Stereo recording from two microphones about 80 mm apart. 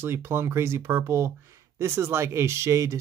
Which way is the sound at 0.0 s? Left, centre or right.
Right.